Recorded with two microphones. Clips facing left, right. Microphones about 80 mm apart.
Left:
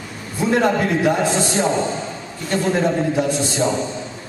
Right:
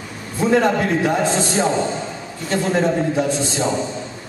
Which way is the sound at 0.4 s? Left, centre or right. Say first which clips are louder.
Right 1 dB; centre.